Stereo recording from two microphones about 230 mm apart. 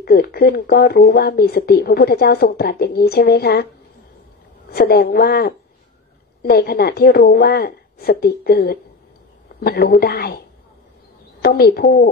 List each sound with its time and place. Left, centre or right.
0.0 s speech: left
4.6 s speech: left
11.4 s a woman's voice: left